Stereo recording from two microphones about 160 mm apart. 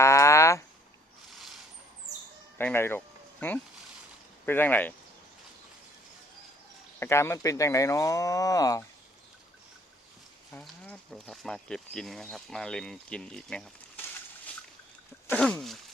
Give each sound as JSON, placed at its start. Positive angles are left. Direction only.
{"t": 0.0, "sound": "a sound", "side_deg": 20}
{"t": 1.4, "sound": "a sound", "side_deg": 0}
{"t": 2.6, "sound": "speech", "side_deg": 15}
{"t": 7.0, "sound": "speech", "side_deg": 15}
{"t": 10.6, "sound": "speech", "side_deg": 0}
{"t": 15.3, "sound": "speech", "side_deg": 5}